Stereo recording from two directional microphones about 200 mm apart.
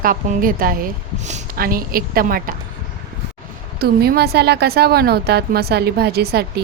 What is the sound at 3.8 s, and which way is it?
A woman's voice, 50° right (ahead or behind).